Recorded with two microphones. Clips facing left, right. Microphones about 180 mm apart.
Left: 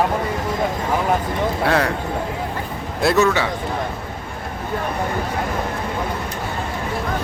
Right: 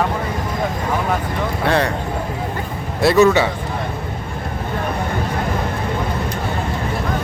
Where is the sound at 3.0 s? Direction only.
Centre (ahead or behind).